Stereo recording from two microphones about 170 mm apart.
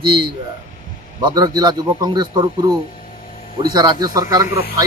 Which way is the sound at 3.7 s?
25° right (ahead or behind).